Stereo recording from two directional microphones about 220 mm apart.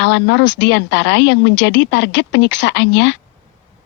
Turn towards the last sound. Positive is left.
turn(degrees=55)  # may be behind; listen again after turning